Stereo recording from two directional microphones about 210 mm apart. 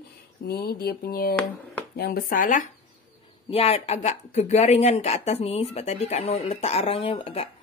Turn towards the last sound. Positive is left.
turn(degrees=25)  # may be behind; listen again after turning